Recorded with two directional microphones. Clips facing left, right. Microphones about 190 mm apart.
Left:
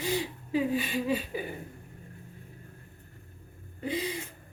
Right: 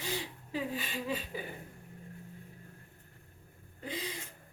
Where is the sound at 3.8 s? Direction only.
10° left (ahead or behind).